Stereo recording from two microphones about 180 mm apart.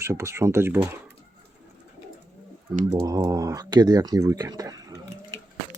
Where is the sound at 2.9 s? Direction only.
20° right (ahead or behind).